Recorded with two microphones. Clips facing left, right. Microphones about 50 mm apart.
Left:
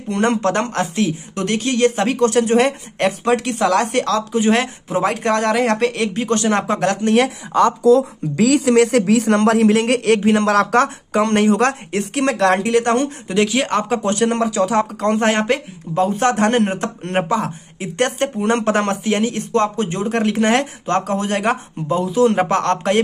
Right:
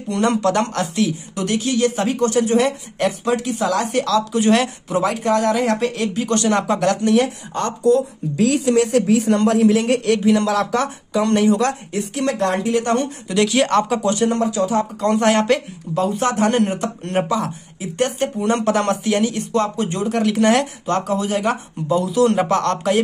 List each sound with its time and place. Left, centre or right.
0.2 s speech: left
1.3 s speech: left
4.3 s speech: left
5.0 s speech: left
6.1 s speech: left
8.4 s speech: left
10.2 s speech: left
13.3 s speech: left
14.1 s speech: left
15.0 s speech: left
16.2 s a man's voice: left
17.7 s a man's voice: left
18.6 s speech: left
21.9 s speech: left